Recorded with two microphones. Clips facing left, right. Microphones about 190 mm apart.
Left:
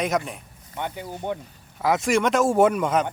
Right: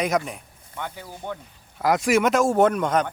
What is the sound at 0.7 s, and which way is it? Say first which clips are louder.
Speech: left 4 dB; 20° left (ahead or behind).